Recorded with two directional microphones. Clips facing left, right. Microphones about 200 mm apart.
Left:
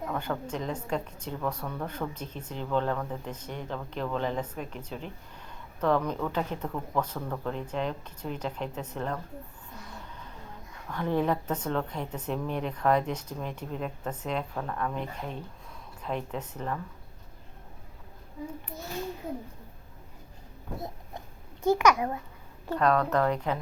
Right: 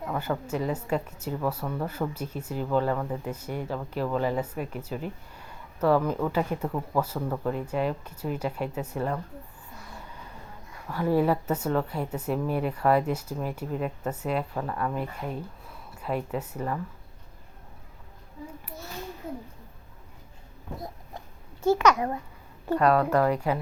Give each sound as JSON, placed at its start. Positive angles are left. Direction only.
{"t": 0.1, "sound": "speech", "side_deg": -5}
{"t": 9.9, "sound": "a sound", "side_deg": -10}
{"t": 10.8, "sound": "speech", "side_deg": -5}
{"t": 20.7, "sound": "a sound", "side_deg": 25}
{"t": 21.6, "sound": "a child's voice", "side_deg": 15}
{"t": 22.7, "sound": "speech", "side_deg": -10}